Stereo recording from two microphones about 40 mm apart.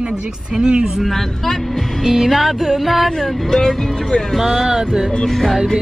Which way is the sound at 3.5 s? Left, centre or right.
Centre.